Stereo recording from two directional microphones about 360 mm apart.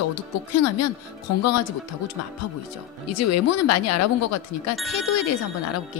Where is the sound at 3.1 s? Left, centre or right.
Left.